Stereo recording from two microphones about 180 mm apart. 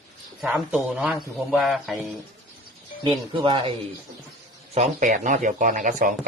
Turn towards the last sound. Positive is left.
turn(degrees=-45)  # may be behind; listen again after turning